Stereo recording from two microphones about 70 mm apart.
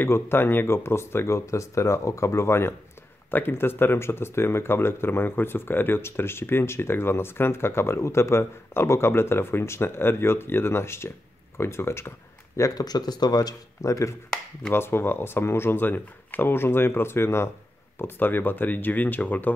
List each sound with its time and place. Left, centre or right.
0.0 s speech: left
12.7 s speech: left
14.7 s speech: left